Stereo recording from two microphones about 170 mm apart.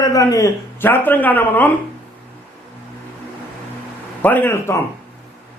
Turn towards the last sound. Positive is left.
turn(degrees=15)  # may be behind; listen again after turning